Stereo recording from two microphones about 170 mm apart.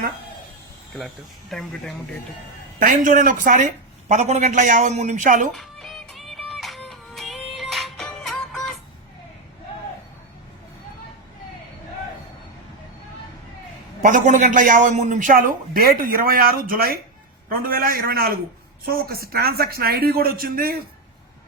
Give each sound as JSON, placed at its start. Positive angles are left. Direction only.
{"t": 0.9, "sound": "speech", "side_deg": 0}
{"t": 2.7, "sound": "a man's voice", "side_deg": -50}
{"t": 5.5, "sound": "music", "side_deg": 0}
{"t": 14.0, "sound": "a man's voice", "side_deg": -50}